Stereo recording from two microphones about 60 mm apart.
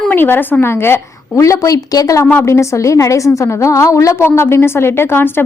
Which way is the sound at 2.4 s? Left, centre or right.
Left.